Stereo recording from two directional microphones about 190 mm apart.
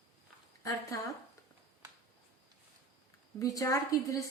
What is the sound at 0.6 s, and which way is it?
Speech, 15° left (ahead or behind).